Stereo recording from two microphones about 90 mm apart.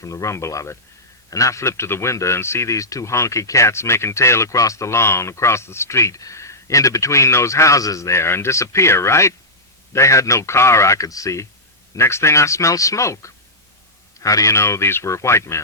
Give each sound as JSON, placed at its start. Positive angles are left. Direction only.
{"t": 0.0, "sound": "a man's voice", "side_deg": 35}